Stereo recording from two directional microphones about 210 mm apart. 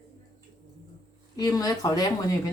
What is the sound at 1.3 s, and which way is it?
A woman's voice, 20° left (ahead or behind).